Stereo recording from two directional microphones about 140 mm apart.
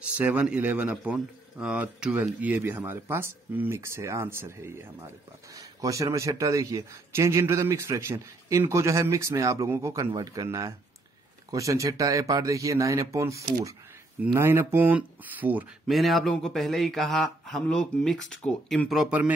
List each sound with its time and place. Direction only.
0.0 s speech: 10° right (ahead or behind)
15.9 s speech: centre (ahead or behind)